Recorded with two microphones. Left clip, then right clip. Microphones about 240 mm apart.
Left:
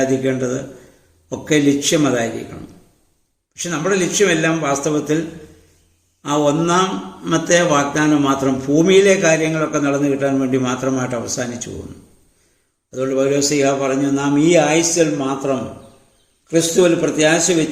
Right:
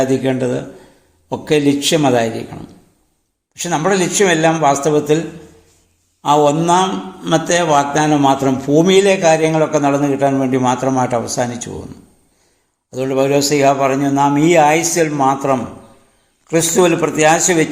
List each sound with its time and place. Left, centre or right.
0.0 s a man's voice: centre
1.6 s a man's voice: centre
3.5 s a man's voice: centre
6.2 s a man's voice: centre
12.9 s a man's voice: centre
16.5 s a man's voice: right